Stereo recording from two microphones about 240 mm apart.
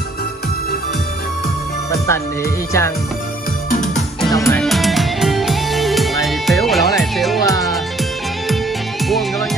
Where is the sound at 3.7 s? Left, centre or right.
Left.